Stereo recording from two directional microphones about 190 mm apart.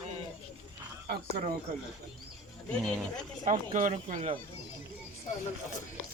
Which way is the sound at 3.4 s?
40° right (ahead or behind).